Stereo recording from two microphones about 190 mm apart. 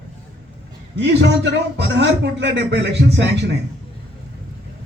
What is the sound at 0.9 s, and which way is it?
A man's voice, 70° right (ahead or behind).